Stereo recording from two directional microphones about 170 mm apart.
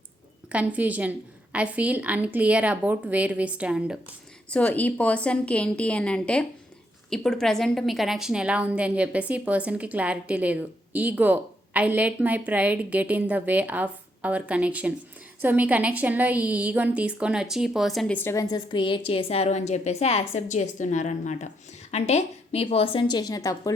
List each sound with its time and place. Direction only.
0.5 s a woman's voice: 10° right (ahead or behind)
4.4 s a woman's voice: 5° left (ahead or behind)
18.2 s a woman's voice: 15° left (ahead or behind)